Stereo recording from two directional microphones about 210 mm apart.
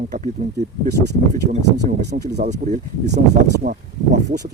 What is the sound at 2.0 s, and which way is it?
Speech, 50° right (ahead or behind).